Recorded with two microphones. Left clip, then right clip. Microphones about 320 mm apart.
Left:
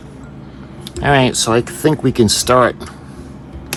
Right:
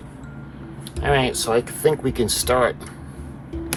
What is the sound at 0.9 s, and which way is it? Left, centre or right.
Speech, left.